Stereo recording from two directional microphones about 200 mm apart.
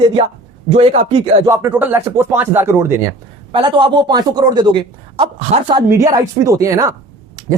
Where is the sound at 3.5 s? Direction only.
25° right (ahead or behind).